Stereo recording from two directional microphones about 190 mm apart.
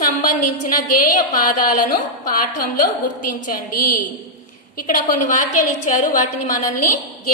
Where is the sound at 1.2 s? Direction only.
45° left (ahead or behind).